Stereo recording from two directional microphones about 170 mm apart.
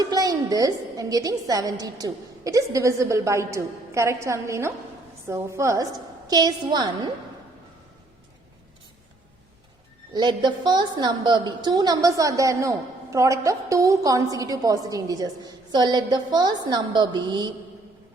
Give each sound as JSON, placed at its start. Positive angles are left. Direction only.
{"t": 0.0, "sound": "a woman's voice", "side_deg": -20}
{"t": 10.1, "sound": "a woman's voice", "side_deg": -25}